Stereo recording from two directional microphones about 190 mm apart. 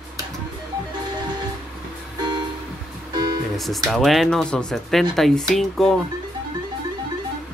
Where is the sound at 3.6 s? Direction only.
Centre (ahead or behind).